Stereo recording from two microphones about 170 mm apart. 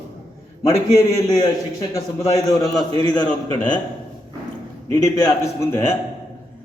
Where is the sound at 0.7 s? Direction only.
20° left (ahead or behind).